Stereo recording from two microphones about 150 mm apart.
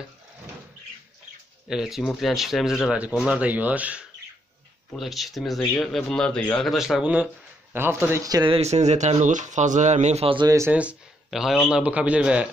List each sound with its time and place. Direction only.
1.7 s speech: 5° right (ahead or behind); by 8.5 s 25° right (ahead or behind)
8.5 s speech: 45° right (ahead or behind)
10.7 s speech: 10° right (ahead or behind)